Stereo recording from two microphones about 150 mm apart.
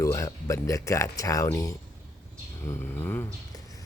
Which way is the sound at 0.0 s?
20° left (ahead or behind).